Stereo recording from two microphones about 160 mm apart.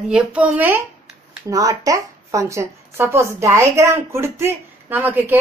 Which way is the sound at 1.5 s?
20° right (ahead or behind).